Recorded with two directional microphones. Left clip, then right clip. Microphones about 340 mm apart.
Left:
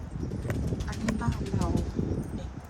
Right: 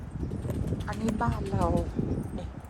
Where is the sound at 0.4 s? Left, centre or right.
Centre.